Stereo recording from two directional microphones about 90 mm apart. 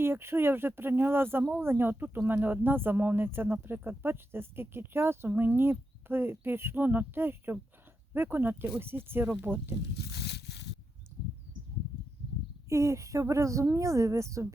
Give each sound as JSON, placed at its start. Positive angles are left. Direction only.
{"t": 0.0, "sound": "speech", "side_deg": -25}
{"t": 12.6, "sound": "speech", "side_deg": -35}